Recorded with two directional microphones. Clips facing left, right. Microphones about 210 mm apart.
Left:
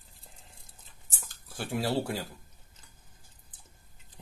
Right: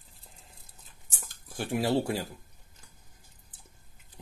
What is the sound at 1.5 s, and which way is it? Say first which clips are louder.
Speech: right 3 dB; 20° right (ahead or behind).